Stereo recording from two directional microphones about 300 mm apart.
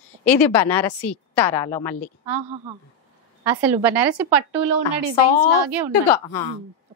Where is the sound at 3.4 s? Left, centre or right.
Centre.